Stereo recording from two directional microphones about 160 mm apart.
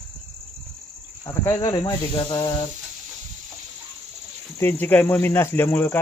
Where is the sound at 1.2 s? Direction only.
20° left (ahead or behind).